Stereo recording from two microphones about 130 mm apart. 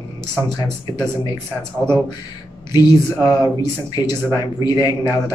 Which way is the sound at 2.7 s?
30° left (ahead or behind).